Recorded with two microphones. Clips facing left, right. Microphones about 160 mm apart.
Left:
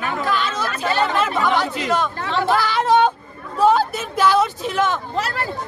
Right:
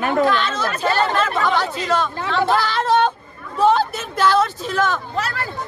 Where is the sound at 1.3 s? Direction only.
20° left (ahead or behind).